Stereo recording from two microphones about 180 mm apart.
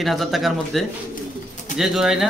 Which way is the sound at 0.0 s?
Centre (ahead or behind).